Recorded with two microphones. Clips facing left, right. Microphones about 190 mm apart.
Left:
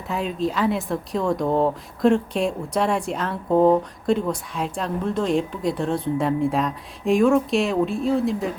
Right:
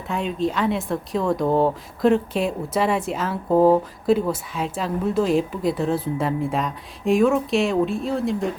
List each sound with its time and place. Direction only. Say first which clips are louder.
0.1 s speech: right 1 dB; centre (ahead or behind)